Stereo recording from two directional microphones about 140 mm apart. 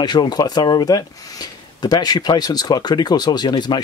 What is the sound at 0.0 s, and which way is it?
Speech, 30° left (ahead or behind).